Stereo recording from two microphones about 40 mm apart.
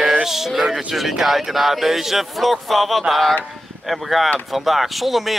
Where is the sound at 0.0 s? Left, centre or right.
Centre.